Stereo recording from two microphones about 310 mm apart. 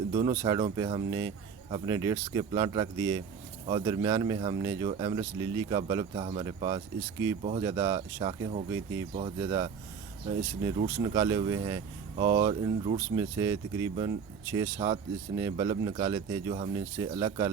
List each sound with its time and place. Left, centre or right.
0.1 s speech: centre